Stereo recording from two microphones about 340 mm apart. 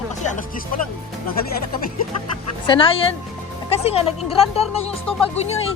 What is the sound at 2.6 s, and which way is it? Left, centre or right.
Speech, centre.